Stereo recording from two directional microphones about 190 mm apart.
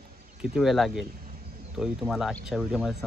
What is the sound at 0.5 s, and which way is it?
Speech, centre (ahead or behind).